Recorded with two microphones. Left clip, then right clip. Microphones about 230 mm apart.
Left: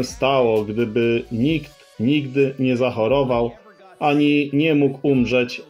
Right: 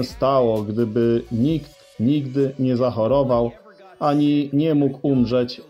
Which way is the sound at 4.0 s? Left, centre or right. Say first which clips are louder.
Left 2 dB; centre.